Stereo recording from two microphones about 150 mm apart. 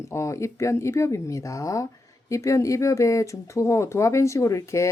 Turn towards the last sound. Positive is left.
turn(degrees=20)  # may be behind; listen again after turning